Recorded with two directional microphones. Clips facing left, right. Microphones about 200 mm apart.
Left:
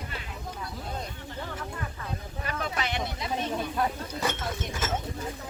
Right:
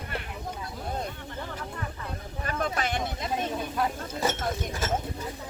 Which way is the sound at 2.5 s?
45° right (ahead or behind).